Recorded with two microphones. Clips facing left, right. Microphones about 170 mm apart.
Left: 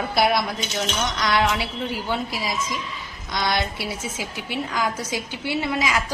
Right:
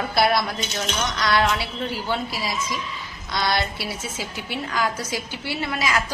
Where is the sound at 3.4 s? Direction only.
15° left (ahead or behind).